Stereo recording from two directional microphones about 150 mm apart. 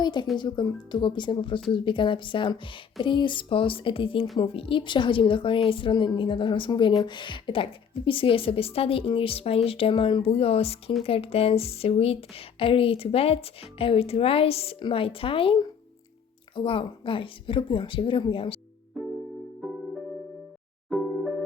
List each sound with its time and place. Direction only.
0.0 s speech: 30° left (ahead or behind)
20.9 s music: centre (ahead or behind)